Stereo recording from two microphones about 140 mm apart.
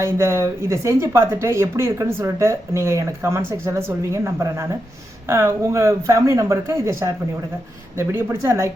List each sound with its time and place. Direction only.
0.0 s speech: 20° right (ahead or behind)